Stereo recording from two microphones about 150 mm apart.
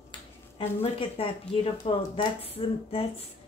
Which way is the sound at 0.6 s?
35° left (ahead or behind).